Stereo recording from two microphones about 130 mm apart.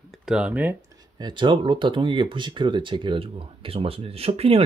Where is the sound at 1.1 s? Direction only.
35° right (ahead or behind).